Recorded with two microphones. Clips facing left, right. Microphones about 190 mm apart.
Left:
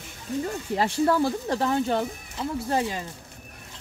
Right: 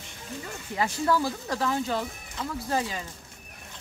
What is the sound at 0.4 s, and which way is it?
Speech, 35° left (ahead or behind).